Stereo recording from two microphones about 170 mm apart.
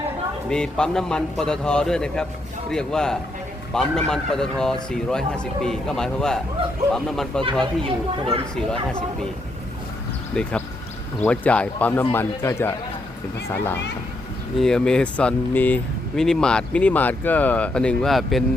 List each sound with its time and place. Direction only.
0.5 s speech: 5° left (ahead or behind)
7.9 s speech: 30° right (ahead or behind)
10.3 s speech: 5° left (ahead or behind)
14.6 s speech: 5° left (ahead or behind)